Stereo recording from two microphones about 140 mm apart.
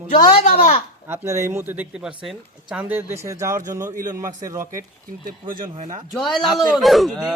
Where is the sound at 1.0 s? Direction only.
20° right (ahead or behind).